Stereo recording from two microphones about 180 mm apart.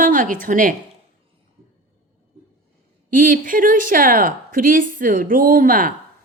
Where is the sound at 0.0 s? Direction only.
45° right (ahead or behind).